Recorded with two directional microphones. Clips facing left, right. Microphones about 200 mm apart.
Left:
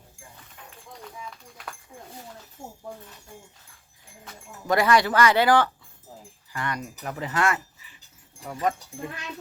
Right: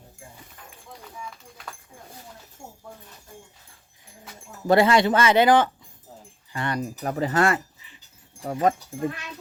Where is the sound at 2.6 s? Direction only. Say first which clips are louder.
Left 3 dB; 35° left (ahead or behind).